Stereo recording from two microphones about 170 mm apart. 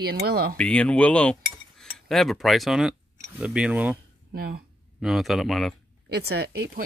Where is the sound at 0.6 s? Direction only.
5° left (ahead or behind).